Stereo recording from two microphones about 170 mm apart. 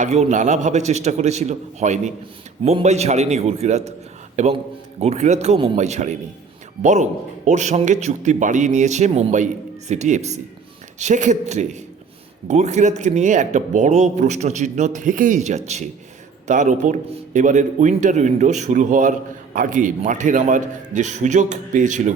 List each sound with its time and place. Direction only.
0.0 s a man's voice: 45° right (ahead or behind)